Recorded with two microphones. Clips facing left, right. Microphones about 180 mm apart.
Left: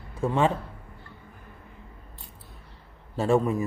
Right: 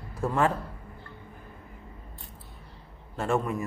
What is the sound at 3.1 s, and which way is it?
Speech, centre (ahead or behind).